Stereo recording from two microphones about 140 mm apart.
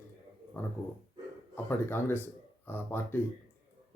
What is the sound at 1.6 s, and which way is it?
Speech, 15° left (ahead or behind).